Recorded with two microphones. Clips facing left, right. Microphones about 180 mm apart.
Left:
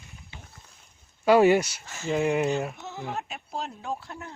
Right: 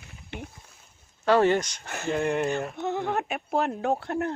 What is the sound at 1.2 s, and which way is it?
Speech, 10° left (ahead or behind).